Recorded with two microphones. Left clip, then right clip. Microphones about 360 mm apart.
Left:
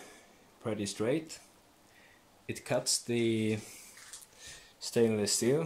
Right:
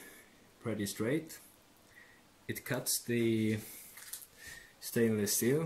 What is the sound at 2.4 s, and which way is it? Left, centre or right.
Speech, centre.